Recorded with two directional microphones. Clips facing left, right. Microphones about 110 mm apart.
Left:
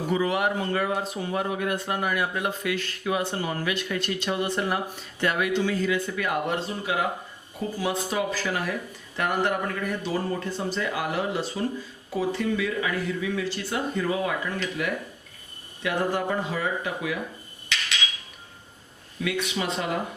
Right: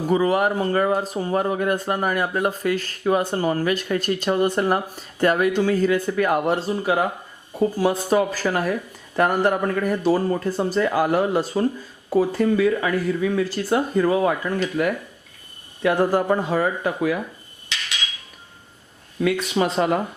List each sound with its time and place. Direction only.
0.1 s speech: 40° right (ahead or behind)
19.2 s speech: 40° right (ahead or behind)